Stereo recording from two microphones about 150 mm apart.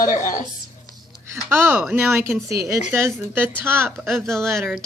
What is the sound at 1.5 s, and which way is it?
Speech, 15° right (ahead or behind).